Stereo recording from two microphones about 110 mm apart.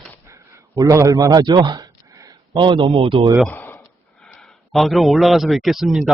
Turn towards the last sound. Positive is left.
turn(degrees=-5)  # may be behind; listen again after turning